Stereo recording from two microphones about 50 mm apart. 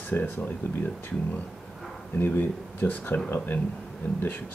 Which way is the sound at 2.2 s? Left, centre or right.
Left.